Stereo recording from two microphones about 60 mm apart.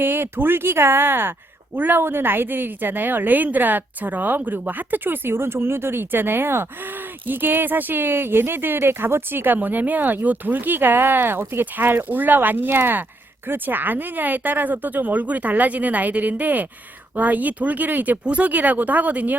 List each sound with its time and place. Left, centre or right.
0.0 s speech: right